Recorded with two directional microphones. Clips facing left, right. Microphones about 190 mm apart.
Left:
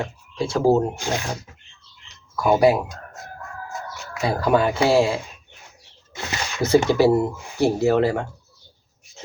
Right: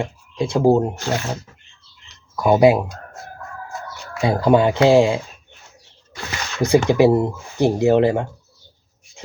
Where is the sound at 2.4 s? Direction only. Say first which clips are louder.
Right 3 dB; 15° right (ahead or behind).